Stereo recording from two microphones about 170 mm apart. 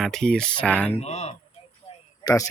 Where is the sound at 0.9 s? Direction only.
40° left (ahead or behind).